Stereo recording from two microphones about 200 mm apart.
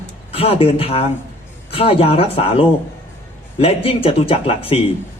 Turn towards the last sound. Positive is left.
turn(degrees=30)  # may be behind; listen again after turning